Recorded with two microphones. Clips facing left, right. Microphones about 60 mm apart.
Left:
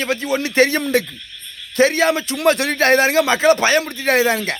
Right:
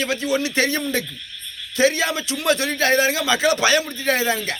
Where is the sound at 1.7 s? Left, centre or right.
Left.